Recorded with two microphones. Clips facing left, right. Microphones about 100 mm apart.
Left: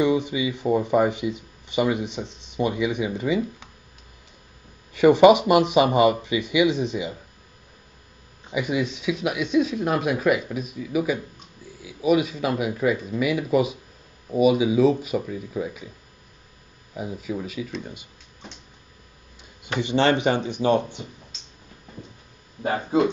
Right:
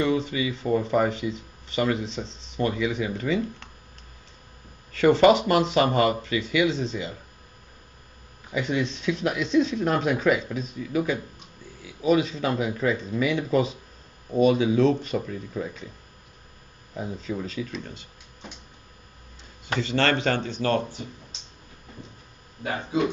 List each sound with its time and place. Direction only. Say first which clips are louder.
0.0 s speech: left 3 dB; 15° left (ahead or behind)
4.9 s speech: left 3 dB; 15° left (ahead or behind)
8.5 s speech: left 1 dB; 15° left (ahead or behind)
16.9 s speech: left 1 dB; 10° left (ahead or behind)
19.6 s speech: left 3 dB; 20° left (ahead or behind)
22.6 s speech: left 5 dB; 40° left (ahead or behind)